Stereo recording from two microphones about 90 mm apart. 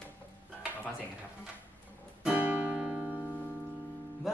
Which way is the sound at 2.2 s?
15° right (ahead or behind).